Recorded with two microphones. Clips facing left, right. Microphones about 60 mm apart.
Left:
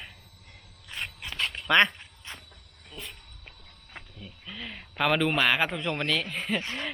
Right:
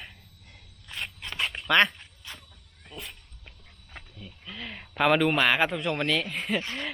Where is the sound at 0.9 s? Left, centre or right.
Centre.